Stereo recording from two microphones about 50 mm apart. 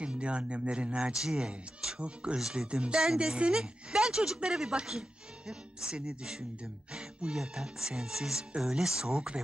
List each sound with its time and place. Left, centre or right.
0.0 s a woman's voice: right
6.6 s music: right
7.3 s a woman's voice: centre